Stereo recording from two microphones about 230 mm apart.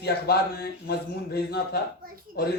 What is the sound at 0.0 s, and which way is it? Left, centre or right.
Speech, left.